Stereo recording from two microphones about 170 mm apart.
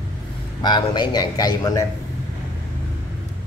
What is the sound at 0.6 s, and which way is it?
A man's voice, 25° left (ahead or behind).